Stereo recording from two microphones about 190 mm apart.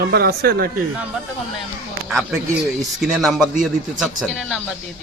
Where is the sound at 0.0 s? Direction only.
55° right (ahead or behind).